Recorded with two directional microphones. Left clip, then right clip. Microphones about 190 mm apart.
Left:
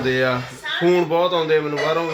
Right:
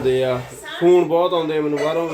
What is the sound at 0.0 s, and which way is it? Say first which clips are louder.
A man's voice: right 1 dB; 5° right (ahead or behind).